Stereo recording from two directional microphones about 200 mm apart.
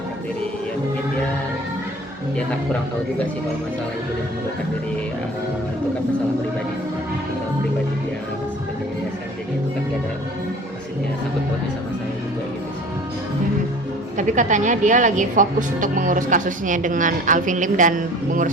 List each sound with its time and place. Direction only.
14.2 s speech: 40° right (ahead or behind)